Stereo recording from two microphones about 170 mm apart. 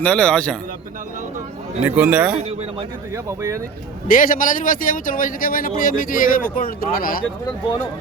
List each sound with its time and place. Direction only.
0.0 s a man's voice: 5° left (ahead or behind)
1.8 s speech: 10° right (ahead or behind)
2.3 s speech: 35° right (ahead or behind)
3.2 s speech: 15° right (ahead or behind)
4.1 s a man's voice: 55° left (ahead or behind)